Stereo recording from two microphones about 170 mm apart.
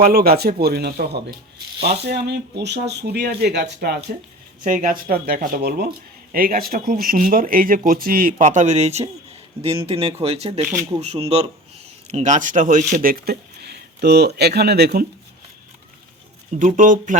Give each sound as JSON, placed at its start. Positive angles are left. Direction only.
{"t": 0.0, "sound": "speech", "side_deg": -60}
{"t": 4.6, "sound": "speech", "side_deg": -55}
{"t": 16.5, "sound": "speech", "side_deg": -50}